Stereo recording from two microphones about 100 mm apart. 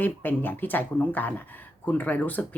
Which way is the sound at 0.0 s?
20° left (ahead or behind).